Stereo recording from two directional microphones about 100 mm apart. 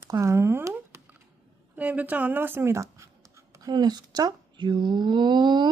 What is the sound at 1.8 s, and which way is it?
Speech, 15° right (ahead or behind).